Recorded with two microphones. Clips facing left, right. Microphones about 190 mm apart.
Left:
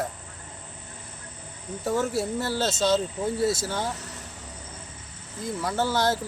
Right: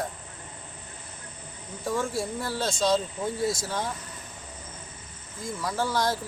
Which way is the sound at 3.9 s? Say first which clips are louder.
Left 2 dB; 75° left (ahead or behind).